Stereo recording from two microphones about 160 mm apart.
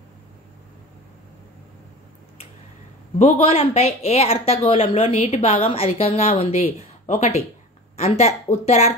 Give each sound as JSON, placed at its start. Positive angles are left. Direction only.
{"t": 3.2, "sound": "a woman's voice", "side_deg": 40}